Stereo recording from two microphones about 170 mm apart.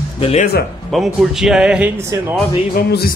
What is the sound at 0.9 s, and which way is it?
Speech, centre (ahead or behind).